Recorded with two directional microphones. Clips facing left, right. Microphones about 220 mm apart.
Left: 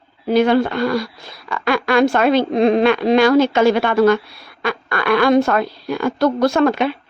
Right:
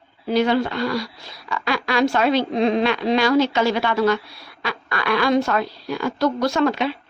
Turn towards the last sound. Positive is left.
turn(degrees=55)  # may be behind; listen again after turning